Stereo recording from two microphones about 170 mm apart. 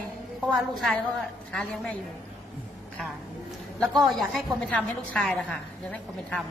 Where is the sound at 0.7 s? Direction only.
Centre (ahead or behind).